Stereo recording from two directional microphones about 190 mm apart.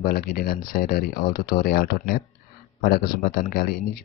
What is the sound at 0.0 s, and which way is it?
Speech, 50° left (ahead or behind).